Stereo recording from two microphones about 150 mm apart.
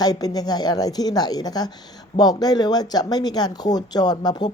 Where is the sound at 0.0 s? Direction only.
25° left (ahead or behind).